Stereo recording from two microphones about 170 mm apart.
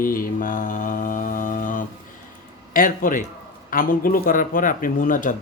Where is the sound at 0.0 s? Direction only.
55° left (ahead or behind).